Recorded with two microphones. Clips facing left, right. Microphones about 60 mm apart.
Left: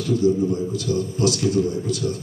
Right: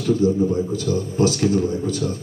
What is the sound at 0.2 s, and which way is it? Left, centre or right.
A man's voice, right.